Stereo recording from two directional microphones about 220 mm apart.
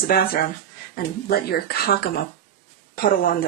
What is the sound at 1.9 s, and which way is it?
A woman's voice, 45° left (ahead or behind).